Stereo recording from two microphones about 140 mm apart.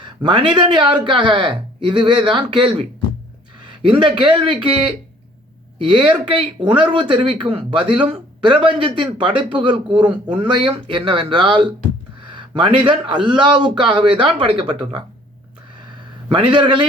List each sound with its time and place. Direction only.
0.0 s a man's voice: 35° right (ahead or behind)
3.8 s speech: 35° right (ahead or behind)
16.3 s speech: 35° right (ahead or behind)